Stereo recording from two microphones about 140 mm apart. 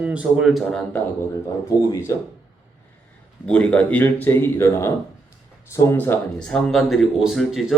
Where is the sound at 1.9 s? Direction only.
20° left (ahead or behind).